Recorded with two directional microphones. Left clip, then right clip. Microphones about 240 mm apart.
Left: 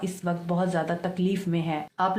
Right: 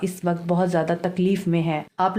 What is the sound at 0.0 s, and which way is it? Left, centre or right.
Speech, right.